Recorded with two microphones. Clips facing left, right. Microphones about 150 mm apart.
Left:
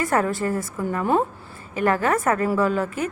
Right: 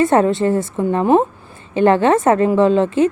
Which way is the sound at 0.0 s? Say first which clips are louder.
Right 8 dB; 25° right (ahead or behind).